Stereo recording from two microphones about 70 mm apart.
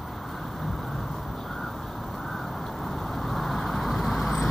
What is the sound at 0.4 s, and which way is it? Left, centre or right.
Vehicle, centre.